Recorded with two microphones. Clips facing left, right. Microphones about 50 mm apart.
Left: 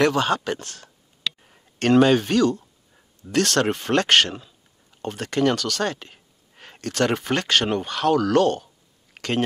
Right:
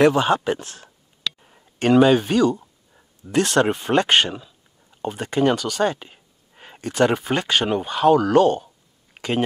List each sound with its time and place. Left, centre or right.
0.0 s speech: centre
1.8 s speech: centre
9.1 s a sound: centre